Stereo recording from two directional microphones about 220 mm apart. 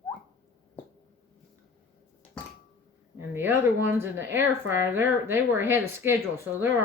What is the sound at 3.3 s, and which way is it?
Speech, 10° right (ahead or behind).